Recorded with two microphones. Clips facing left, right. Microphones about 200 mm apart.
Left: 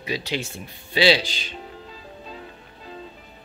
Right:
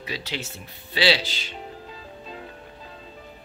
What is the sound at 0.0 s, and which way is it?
A child's voice, 15° left (ahead or behind).